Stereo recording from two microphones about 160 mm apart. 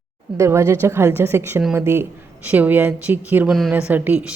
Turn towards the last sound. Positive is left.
turn(degrees=-10)  # may be behind; listen again after turning